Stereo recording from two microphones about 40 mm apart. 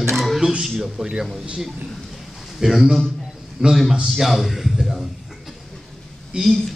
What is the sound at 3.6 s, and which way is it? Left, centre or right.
Speech, centre.